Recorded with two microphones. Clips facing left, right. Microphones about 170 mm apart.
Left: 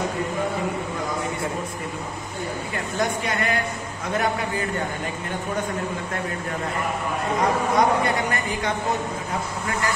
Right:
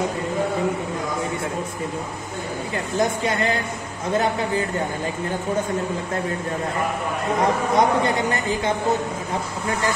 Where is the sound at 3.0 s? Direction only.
25° right (ahead or behind).